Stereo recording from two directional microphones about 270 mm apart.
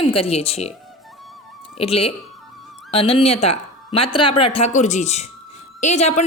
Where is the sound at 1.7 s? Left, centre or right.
Left.